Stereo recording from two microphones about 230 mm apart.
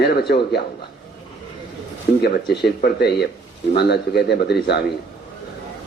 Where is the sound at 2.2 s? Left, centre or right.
Left.